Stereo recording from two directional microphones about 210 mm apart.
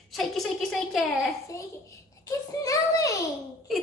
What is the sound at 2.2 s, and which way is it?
Speech, 15° left (ahead or behind).